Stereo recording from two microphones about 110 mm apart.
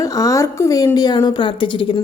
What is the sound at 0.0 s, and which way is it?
A woman's voice, 30° left (ahead or behind).